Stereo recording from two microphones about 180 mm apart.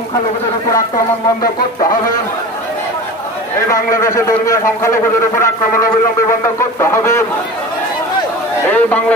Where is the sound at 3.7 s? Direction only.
20° left (ahead or behind).